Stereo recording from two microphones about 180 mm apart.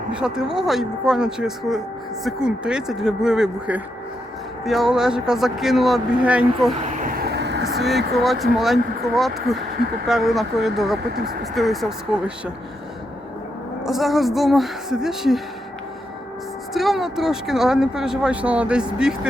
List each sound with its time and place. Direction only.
0.1 s speech: 5° right (ahead or behind)
7.0 s vehicle: 55° right (ahead or behind)
7.8 s speech: centre (ahead or behind)
13.8 s speech: centre (ahead or behind)
16.7 s speech: centre (ahead or behind)